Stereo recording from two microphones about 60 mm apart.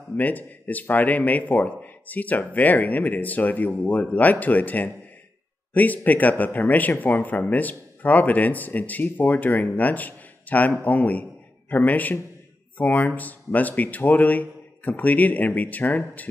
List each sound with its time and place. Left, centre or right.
0.2 s speech: left